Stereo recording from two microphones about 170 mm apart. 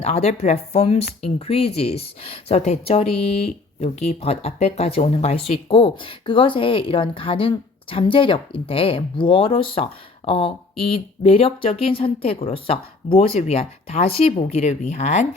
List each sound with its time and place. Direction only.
0.0 s speech: 35° left (ahead or behind)